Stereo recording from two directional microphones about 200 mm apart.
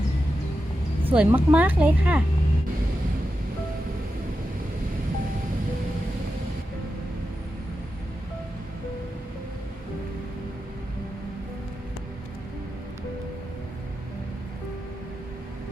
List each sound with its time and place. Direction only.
1.0 s speech: 10° right (ahead or behind)